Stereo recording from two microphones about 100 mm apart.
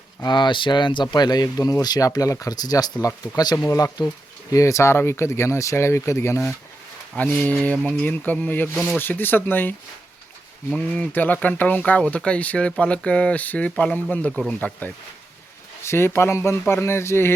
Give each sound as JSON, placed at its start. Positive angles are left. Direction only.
{"t": 0.3, "sound": "speech", "side_deg": 50}
{"t": 7.2, "sound": "speech", "side_deg": 15}
{"t": 8.7, "sound": "speech", "side_deg": 0}
{"t": 9.0, "sound": "speech", "side_deg": 20}